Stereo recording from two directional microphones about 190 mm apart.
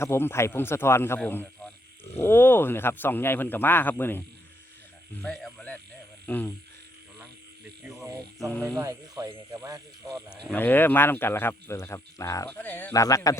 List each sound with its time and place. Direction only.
0.0 s speech: 15° left (ahead or behind)
5.2 s speech: 5° left (ahead or behind)
6.2 s frog: 10° left (ahead or behind)
8.4 s speech: 10° left (ahead or behind)
8.8 s speech: 15° right (ahead or behind)
10.1 s speech: centre (ahead or behind)
10.5 s speech: 10° left (ahead or behind)